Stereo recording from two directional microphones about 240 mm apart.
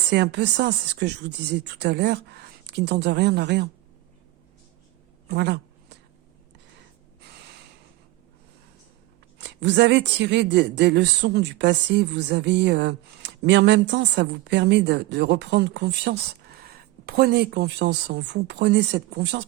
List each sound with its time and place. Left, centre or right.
0.1 s speech: right
5.3 s a sound: right
7.2 s gasp: right
9.4 s speech: right